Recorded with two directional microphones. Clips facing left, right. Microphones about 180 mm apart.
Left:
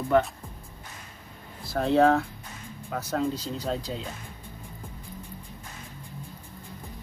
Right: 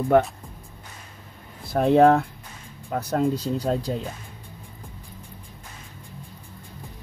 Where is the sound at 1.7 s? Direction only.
60° right (ahead or behind).